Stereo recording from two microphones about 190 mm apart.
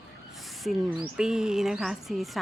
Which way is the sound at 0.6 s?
Centre (ahead or behind).